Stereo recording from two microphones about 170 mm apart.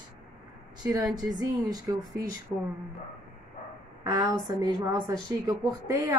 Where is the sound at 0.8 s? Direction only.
20° right (ahead or behind).